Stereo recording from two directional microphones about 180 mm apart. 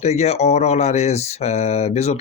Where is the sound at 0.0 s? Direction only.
35° left (ahead or behind).